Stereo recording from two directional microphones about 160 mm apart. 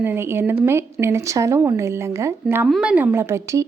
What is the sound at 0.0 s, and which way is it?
Speech, 15° right (ahead or behind).